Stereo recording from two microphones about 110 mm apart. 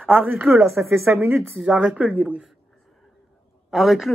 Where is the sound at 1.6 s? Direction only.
10° right (ahead or behind).